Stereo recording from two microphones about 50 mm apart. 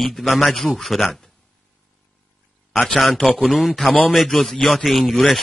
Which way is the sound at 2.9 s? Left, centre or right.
Centre.